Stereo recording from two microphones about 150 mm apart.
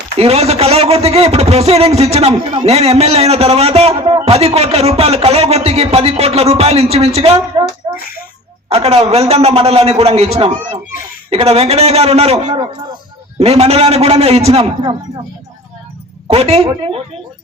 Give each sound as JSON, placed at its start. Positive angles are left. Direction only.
{"t": 0.2, "sound": "speech", "side_deg": -45}
{"t": 7.6, "sound": "hands", "side_deg": -35}
{"t": 8.7, "sound": "speech", "side_deg": -40}
{"t": 16.3, "sound": "speech", "side_deg": -40}